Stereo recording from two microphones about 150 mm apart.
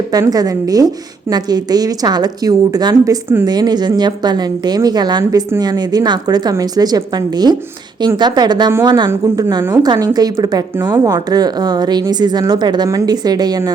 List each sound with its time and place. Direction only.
0.1 s a woman's voice: 25° right (ahead or behind)